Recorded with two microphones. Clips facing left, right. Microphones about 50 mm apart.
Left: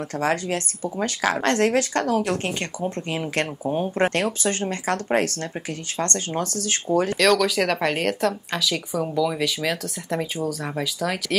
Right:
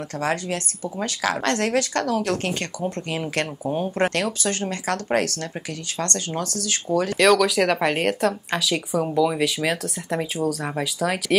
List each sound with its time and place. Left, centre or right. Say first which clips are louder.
0.2 s speech: left 1 dB; left
3.9 s speech: left 1 dB; left
7.2 s speech: right 5 dB; centre